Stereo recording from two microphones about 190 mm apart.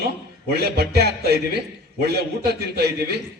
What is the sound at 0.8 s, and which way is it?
A man's voice, 55° right (ahead or behind).